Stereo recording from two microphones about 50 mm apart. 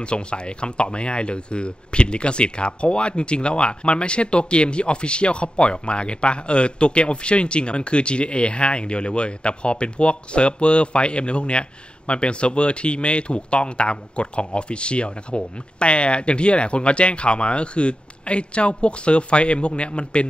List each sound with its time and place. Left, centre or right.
0.0 s speech: centre